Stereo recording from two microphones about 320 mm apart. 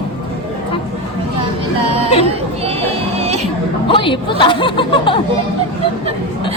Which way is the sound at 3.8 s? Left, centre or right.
Centre.